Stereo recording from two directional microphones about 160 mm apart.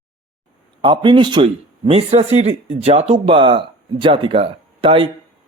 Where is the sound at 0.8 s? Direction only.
30° right (ahead or behind).